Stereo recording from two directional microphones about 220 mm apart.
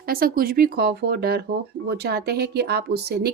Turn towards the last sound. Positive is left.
turn(degrees=-45)  # may be behind; listen again after turning